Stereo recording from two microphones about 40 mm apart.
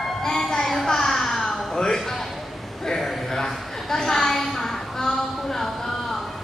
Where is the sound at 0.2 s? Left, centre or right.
Centre.